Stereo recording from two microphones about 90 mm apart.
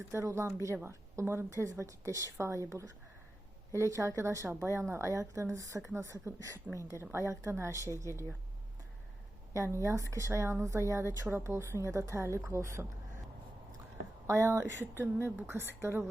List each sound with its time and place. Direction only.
0.1 s speech: 30° right (ahead or behind)
10.1 s speech: 35° right (ahead or behind)
14.3 s speech: 30° right (ahead or behind)